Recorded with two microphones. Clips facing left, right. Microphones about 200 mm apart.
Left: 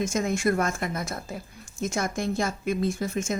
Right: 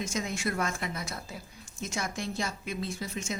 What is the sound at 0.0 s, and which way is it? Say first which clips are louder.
Speech: left 8 dB; 50° left (ahead or behind).